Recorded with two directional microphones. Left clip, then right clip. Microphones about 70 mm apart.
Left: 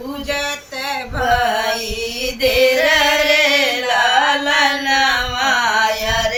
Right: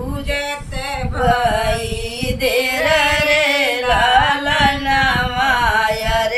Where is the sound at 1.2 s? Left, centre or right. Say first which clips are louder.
Right 1 dB; right.